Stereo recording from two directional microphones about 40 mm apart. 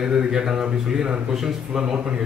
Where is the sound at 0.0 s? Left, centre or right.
Centre.